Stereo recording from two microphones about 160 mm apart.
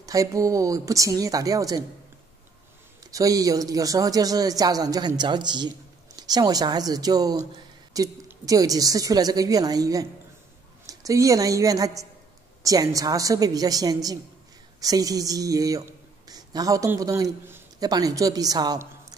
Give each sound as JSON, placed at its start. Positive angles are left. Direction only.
{"t": 0.0, "sound": "a man's voice", "side_deg": -20}
{"t": 3.0, "sound": "a man's voice", "side_deg": -20}